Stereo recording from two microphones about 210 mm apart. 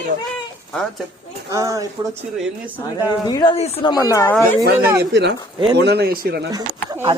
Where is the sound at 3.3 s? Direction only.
20° left (ahead or behind).